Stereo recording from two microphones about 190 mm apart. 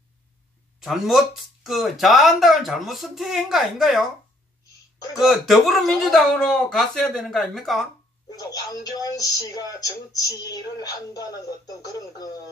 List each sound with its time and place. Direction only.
0.8 s speech: centre (ahead or behind)
5.2 s speech: centre (ahead or behind)
8.4 s speech: 20° left (ahead or behind)